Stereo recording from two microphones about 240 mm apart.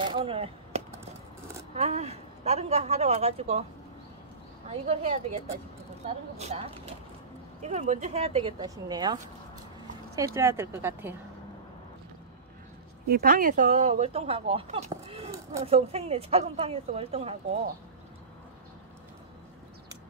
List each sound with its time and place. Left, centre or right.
0.0 s a sound: right
1.7 s speech: right
4.6 s speech: right; by 11.1 s centre
13.1 s speech: right